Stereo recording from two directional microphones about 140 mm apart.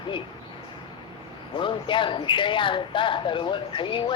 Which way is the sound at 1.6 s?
35° left (ahead or behind).